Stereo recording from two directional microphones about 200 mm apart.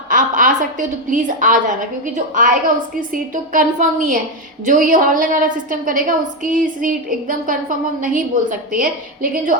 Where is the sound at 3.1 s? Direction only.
40° right (ahead or behind).